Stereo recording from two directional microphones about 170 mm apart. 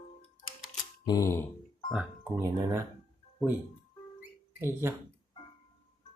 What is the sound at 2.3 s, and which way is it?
Speech, 20° right (ahead or behind).